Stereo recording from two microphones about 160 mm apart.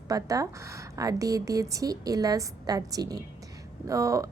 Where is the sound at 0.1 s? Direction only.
20° right (ahead or behind).